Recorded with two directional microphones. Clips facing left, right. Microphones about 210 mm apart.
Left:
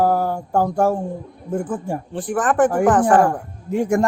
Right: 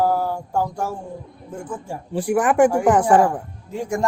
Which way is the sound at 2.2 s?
10° right (ahead or behind).